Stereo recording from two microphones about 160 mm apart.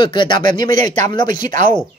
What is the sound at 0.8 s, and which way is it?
Speech, 50° right (ahead or behind).